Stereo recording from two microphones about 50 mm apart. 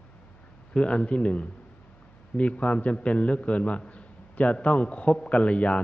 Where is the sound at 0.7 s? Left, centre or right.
Left.